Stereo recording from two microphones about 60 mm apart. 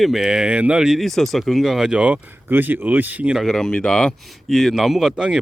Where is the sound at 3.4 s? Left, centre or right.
Centre.